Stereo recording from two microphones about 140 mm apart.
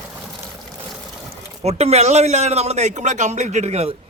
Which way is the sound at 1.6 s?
50° right (ahead or behind).